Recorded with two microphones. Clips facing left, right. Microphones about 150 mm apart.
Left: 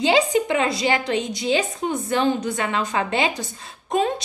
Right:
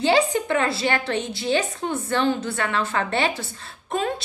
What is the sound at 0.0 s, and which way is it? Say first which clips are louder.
A woman's voice: left 1 dB; 15° left (ahead or behind).